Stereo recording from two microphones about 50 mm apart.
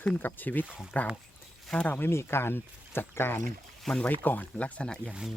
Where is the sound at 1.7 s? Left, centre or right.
Centre.